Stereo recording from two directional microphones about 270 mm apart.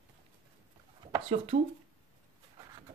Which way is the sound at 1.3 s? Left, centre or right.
Right.